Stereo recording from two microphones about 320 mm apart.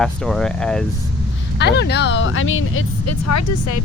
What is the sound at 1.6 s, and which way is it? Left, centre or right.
Speech, left.